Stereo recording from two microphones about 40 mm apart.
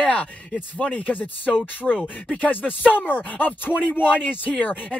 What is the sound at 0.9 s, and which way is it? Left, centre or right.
Speech, left.